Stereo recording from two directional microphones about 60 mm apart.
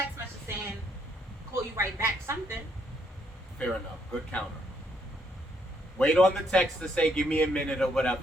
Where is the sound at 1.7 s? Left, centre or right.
Right.